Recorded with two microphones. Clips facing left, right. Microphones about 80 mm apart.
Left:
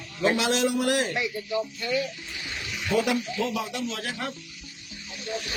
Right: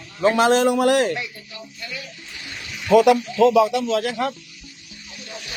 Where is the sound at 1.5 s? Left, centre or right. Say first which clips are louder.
Left 9 dB; left.